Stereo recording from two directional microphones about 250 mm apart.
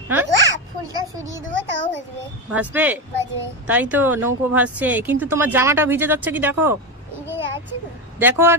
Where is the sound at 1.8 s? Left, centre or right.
Right.